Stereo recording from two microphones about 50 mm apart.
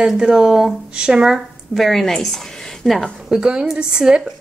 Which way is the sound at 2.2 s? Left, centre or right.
Centre.